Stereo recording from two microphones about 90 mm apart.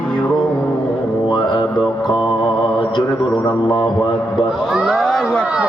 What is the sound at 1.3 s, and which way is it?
Music, 60° left (ahead or behind).